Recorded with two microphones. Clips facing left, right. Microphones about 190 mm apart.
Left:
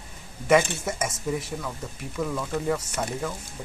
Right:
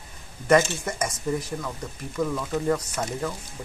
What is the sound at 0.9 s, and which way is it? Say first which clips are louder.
Speech: right 1 dB; 5° left (ahead or behind).